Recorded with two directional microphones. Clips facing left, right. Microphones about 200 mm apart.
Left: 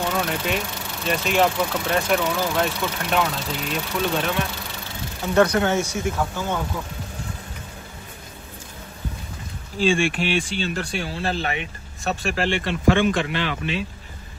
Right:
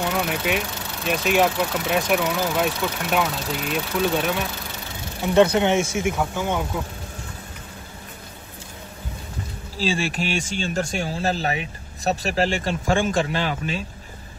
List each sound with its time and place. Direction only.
0.1 s speech: 5° right (ahead or behind)
5.2 s speech: 20° right (ahead or behind)
9.8 s speech: 35° right (ahead or behind)